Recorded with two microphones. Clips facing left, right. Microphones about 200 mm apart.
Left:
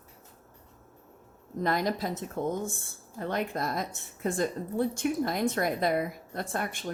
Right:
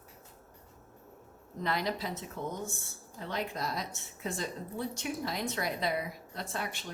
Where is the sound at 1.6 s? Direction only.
45° left (ahead or behind).